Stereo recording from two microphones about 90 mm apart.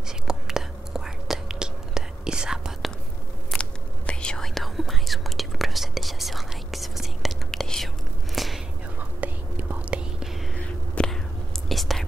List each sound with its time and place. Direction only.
0.3 s whispering: 5° right (ahead or behind)
3.5 s whispering: 10° left (ahead or behind)
9.2 s whispering: 20° right (ahead or behind)
10.5 s whispering: 10° left (ahead or behind)